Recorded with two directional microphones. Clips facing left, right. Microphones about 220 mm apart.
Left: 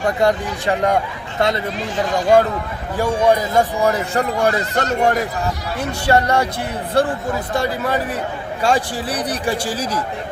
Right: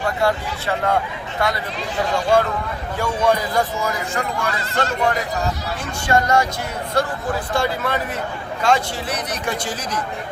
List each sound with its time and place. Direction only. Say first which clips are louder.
0.2 s speech: left 3 dB; 15° left (ahead or behind)
3.0 s speech: left 4 dB; 15° left (ahead or behind)
3.6 s speech: left 5 dB; 35° left (ahead or behind)
6.1 s speech: left 1 dB; 35° left (ahead or behind)
7.6 s speech: left 2 dB; 35° left (ahead or behind)